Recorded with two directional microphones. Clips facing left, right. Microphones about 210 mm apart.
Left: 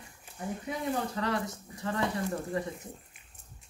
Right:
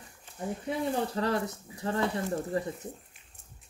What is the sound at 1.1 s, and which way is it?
Speech, 35° right (ahead or behind).